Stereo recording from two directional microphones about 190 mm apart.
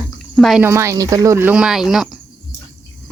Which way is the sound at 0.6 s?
15° right (ahead or behind).